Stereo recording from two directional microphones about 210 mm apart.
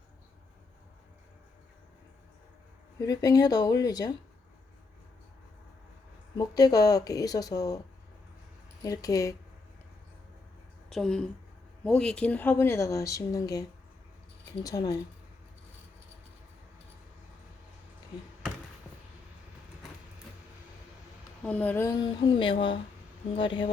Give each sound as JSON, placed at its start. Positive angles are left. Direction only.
{"t": 3.0, "sound": "speech", "side_deg": 15}
{"t": 6.3, "sound": "speech", "side_deg": 20}
{"t": 8.8, "sound": "speech", "side_deg": 15}
{"t": 10.8, "sound": "speech", "side_deg": 0}
{"t": 21.4, "sound": "speech", "side_deg": 5}